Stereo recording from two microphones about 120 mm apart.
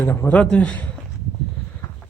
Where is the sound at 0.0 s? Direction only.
20° left (ahead or behind).